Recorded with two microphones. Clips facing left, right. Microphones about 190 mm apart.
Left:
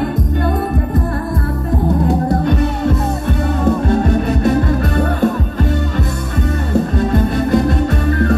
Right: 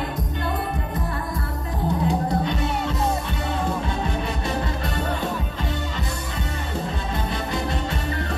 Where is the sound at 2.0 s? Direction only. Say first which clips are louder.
Left 7 dB; 45° left (ahead or behind).